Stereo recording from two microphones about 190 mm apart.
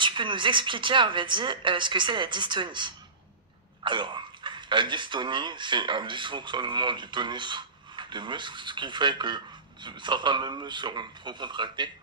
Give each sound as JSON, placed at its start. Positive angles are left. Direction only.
{"t": 0.0, "sound": "speech", "side_deg": -25}